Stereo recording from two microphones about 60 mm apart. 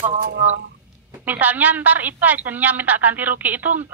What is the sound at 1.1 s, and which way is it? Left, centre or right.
A woman's voice, right.